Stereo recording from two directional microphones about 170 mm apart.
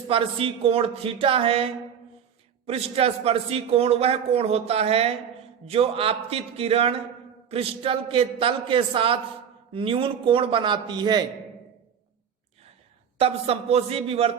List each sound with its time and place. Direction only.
0.1 s a man's voice: 35° right (ahead or behind)
13.1 s a man's voice: 35° right (ahead or behind)